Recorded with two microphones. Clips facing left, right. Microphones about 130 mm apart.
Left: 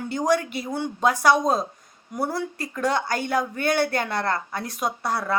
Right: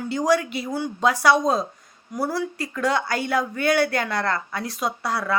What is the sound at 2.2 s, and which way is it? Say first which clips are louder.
Speech: right 1 dB; 20° left (ahead or behind).